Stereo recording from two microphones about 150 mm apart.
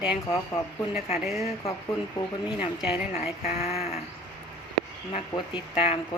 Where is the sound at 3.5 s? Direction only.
45° left (ahead or behind).